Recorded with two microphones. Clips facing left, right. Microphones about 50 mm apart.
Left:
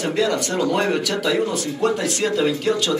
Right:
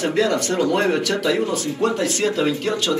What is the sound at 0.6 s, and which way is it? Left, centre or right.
Speech, centre.